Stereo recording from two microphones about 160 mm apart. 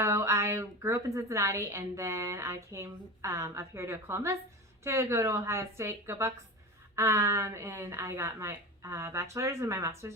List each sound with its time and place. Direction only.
0.0 s a woman's voice: 15° right (ahead or behind)